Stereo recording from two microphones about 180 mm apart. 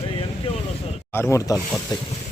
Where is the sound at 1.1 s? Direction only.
15° left (ahead or behind).